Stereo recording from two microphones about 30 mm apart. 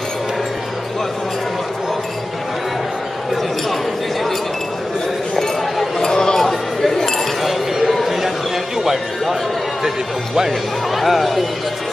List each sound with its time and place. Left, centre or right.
5.3 s chink: centre
6.4 s chink: centre
7.4 s a sound: centre
8.7 s music: centre
9.8 s speech: centre
11.0 s speech: centre